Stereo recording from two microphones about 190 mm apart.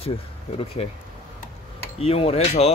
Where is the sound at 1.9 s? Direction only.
30° left (ahead or behind).